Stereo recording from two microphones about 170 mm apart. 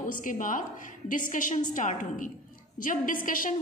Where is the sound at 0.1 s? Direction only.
50° left (ahead or behind).